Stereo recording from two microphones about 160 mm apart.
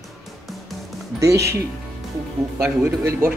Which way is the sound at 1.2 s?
20° right (ahead or behind).